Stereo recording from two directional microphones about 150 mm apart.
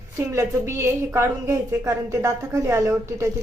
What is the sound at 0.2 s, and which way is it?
A woman's voice, 20° right (ahead or behind).